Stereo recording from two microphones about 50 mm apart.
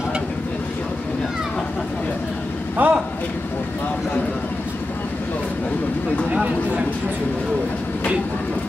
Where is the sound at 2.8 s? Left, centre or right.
Right.